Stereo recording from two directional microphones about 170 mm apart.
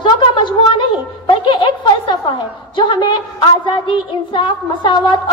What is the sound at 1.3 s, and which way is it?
A woman's voice, 30° left (ahead or behind).